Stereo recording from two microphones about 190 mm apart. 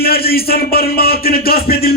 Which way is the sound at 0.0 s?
55° left (ahead or behind).